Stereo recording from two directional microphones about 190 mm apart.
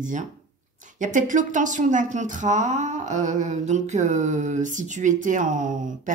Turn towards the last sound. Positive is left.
turn(degrees=-40)  # may be behind; listen again after turning